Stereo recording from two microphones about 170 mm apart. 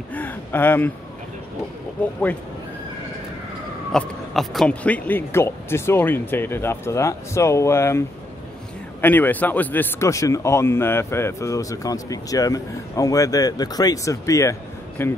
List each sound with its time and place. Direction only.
0.1 s speech: 10° left (ahead or behind)
2.0 s speech: 10° left (ahead or behind)
3.9 s speech: centre (ahead or behind)
9.0 s speech: 10° left (ahead or behind)